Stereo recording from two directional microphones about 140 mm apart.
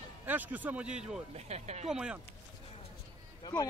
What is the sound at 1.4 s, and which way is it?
Speech, 55° right (ahead or behind).